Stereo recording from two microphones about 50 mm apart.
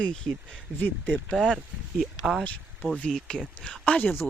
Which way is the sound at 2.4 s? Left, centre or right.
Left.